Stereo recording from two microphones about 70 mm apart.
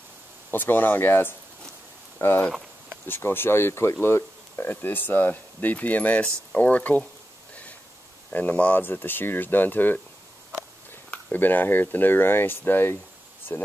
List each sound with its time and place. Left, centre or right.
0.5 s speech: left
8.3 s speech: left
11.1 s speech: left
13.5 s speech: left